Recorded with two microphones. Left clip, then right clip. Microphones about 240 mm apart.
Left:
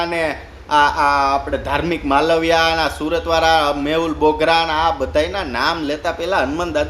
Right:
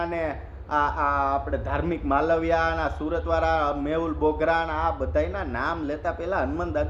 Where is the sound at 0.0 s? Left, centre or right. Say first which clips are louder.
Left 8 dB; centre.